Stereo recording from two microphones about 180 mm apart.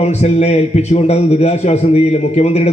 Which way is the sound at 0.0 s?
35° left (ahead or behind).